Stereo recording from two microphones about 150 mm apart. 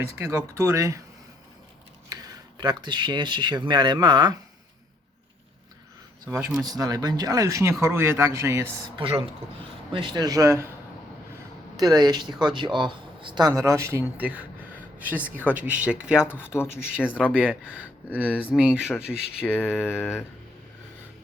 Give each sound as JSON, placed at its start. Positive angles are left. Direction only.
{"t": 0.2, "sound": "speech", "side_deg": -20}
{"t": 2.0, "sound": "speech", "side_deg": -25}
{"t": 6.6, "sound": "speech", "side_deg": -25}
{"t": 9.0, "sound": "a woman's voice", "side_deg": -35}
{"t": 11.8, "sound": "speech", "side_deg": -25}
{"t": 16.5, "sound": "speech", "side_deg": 15}
{"t": 17.3, "sound": "speech", "side_deg": -10}
{"t": 18.3, "sound": "speech", "side_deg": 10}
{"t": 18.5, "sound": "speech", "side_deg": -5}
{"t": 19.8, "sound": "speech", "side_deg": 15}